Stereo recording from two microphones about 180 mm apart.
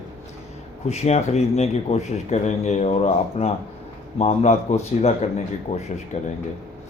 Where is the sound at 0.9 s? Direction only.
40° left (ahead or behind).